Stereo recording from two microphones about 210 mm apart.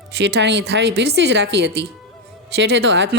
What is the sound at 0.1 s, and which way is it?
A woman's voice, 55° right (ahead or behind).